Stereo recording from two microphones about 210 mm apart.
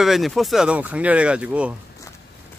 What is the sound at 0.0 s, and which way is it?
Speech, centre (ahead or behind).